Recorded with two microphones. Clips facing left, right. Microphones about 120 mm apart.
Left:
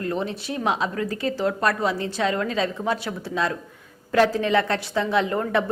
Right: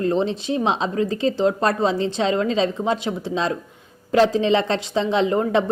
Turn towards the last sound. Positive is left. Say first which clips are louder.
# right 3 dB
turn(degrees=-20)  # may be behind; listen again after turning